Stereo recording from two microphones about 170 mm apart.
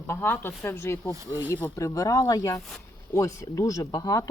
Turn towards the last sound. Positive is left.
turn(degrees=20)  # may be behind; listen again after turning